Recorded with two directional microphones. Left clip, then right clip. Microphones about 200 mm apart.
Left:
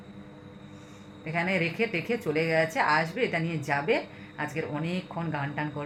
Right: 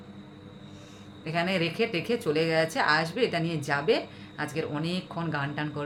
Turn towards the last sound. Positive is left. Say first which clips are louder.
# right 1 dB
turn(degrees=-15)  # may be behind; listen again after turning